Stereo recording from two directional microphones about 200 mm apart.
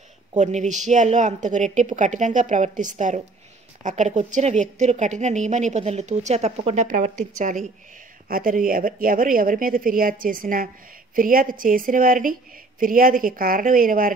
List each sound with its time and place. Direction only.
0.4 s a woman's voice: 35° right (ahead or behind)